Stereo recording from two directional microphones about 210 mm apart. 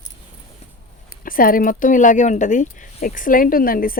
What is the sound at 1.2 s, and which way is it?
Speech, 40° left (ahead or behind).